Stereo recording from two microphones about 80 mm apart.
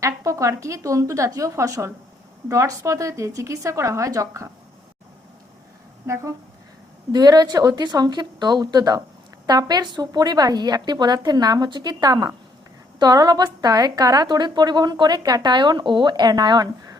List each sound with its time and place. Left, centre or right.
0.0 s a woman's voice: right
7.1 s a woman's voice: right
10.1 s a woman's voice: right